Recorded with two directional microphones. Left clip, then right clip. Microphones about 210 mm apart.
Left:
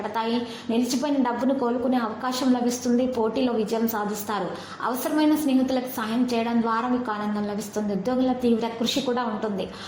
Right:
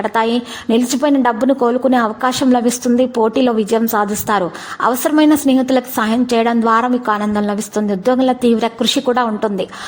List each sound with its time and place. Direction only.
0.0 s a woman's voice: 45° right (ahead or behind)